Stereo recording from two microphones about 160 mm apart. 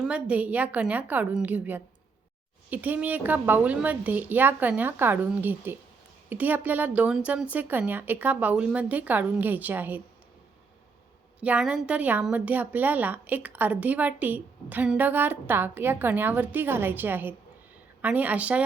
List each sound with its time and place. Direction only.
0.0 s a woman's voice: 10° right (ahead or behind)
11.3 s a woman's voice: 10° right (ahead or behind)